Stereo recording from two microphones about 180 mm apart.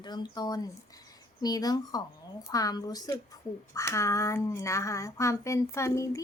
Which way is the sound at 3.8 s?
15° left (ahead or behind).